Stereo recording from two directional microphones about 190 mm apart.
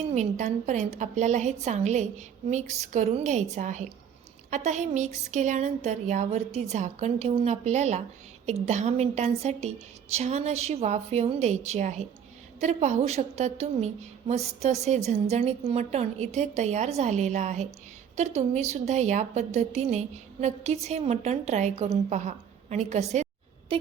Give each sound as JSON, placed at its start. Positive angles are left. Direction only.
{"t": 0.1, "sound": "a woman's voice", "side_deg": -35}